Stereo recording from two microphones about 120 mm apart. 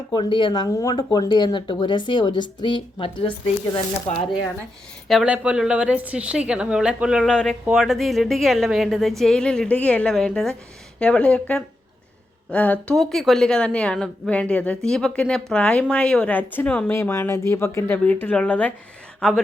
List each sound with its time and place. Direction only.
0.1 s speech: 40° left (ahead or behind)
5.0 s a woman's voice: 5° right (ahead or behind)
7.3 s a woman's voice: 5° left (ahead or behind)
16.9 s speech: 20° left (ahead or behind)